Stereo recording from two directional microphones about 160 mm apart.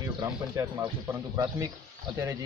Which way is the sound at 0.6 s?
20° right (ahead or behind).